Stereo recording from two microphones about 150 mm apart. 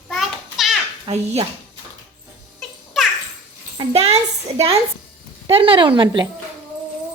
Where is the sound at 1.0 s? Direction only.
45° right (ahead or behind).